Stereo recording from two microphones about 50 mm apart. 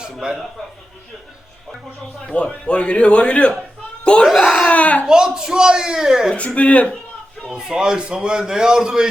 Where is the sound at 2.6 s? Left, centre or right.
Left.